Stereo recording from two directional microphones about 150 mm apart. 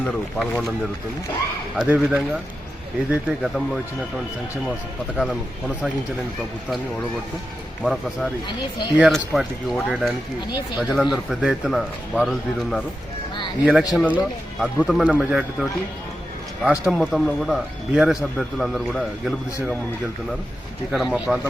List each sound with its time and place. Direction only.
0.0 s speech: 5° left (ahead or behind)
1.7 s speech: 5° right (ahead or behind)
5.1 s speech: 5° left (ahead or behind)
7.8 s speech: centre (ahead or behind)
8.4 s speech: 30° left (ahead or behind)
9.0 s speech: centre (ahead or behind)
16.6 s speech: 5° right (ahead or behind)
20.9 s speech: centre (ahead or behind)